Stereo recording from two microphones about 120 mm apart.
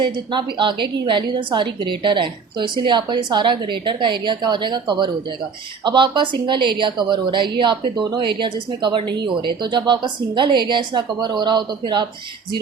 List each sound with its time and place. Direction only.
0.0 s a woman's voice: 40° right (ahead or behind)